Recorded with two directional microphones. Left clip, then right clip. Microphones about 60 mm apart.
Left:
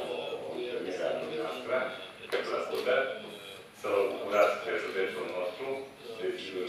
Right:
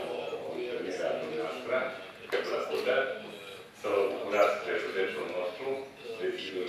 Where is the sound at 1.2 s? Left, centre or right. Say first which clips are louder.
Even; left.